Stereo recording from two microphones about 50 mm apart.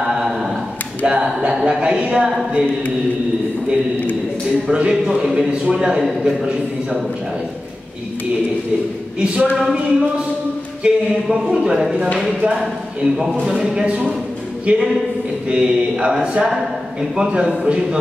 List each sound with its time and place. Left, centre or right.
1.0 s a woman's voice: right
1.5 s a man's voice: centre
1.8 s a woman's voice: right
4.6 s a man's voice: centre
9.2 s a woman's voice: right